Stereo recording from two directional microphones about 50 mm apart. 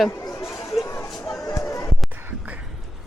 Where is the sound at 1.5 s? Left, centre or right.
Left.